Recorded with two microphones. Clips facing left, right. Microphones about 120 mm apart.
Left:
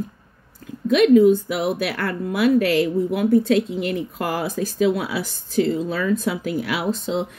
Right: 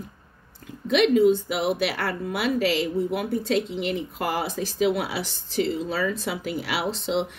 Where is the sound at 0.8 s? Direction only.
45° left (ahead or behind).